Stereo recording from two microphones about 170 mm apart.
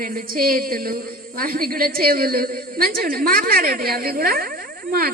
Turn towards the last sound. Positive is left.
turn(degrees=-60)  # may be behind; listen again after turning